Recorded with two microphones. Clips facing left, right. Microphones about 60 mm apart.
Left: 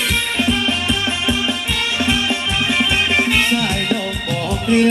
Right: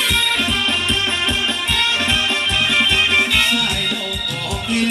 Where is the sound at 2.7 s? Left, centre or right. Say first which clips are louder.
Even; centre.